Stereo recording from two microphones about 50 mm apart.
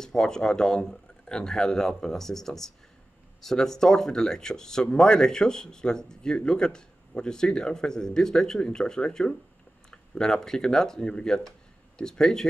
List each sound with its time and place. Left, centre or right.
0.0 s speech: centre